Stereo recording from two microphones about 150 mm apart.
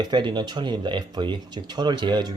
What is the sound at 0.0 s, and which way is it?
Speech, 30° right (ahead or behind).